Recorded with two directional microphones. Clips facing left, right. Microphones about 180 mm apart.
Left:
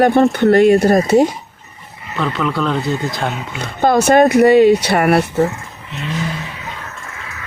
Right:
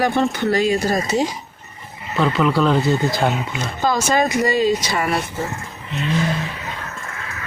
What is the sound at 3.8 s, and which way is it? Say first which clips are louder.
Speech: left 8 dB; 60° left (ahead or behind).